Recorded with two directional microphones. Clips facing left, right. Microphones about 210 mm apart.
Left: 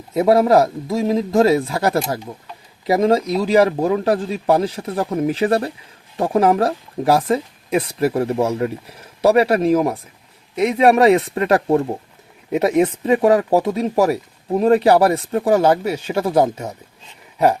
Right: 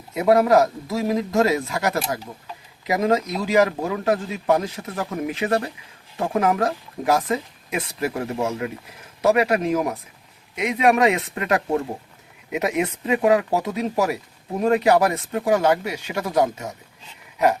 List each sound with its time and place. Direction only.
0.1 s a man's voice: 30° left (ahead or behind)